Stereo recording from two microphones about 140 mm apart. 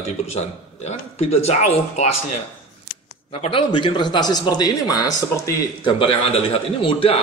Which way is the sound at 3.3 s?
40° left (ahead or behind).